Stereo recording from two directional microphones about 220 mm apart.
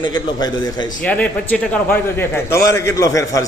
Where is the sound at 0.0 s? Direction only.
20° left (ahead or behind).